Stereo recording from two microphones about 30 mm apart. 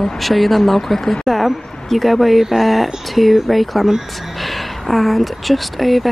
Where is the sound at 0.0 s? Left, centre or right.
Centre.